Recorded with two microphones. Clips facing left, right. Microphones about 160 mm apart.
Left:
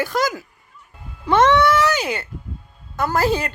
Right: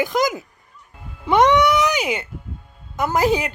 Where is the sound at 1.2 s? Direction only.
15° right (ahead or behind).